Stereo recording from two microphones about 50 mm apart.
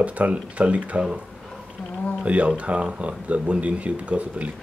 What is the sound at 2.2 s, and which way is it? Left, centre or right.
Speech, right.